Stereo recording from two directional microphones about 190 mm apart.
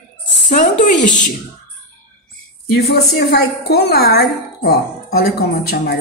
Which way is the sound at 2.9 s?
60° left (ahead or behind).